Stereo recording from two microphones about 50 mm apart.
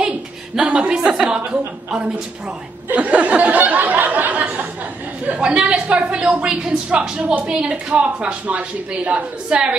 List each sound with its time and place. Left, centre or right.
0.6 s a woman's voice: centre
2.9 s a sound: right
5.4 s a woman's voice: right
7.7 s a woman's voice: right